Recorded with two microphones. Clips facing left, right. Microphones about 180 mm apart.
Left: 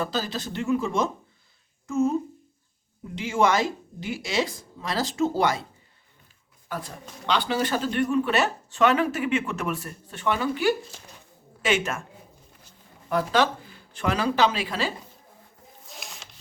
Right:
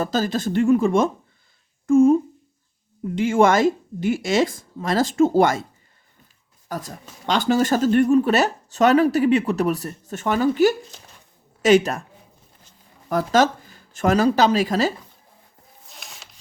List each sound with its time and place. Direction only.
0.0 s speech: 45° right (ahead or behind)
3.2 s speech: 50° right (ahead or behind)
6.7 s speech: 40° right (ahead or behind)
13.1 s speech: 40° right (ahead or behind)
15.9 s zipper: centre (ahead or behind)